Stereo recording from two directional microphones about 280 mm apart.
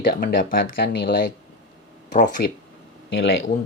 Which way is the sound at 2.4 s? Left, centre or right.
Left.